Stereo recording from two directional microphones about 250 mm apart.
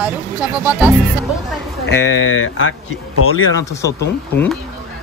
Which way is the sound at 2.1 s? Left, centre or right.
Left.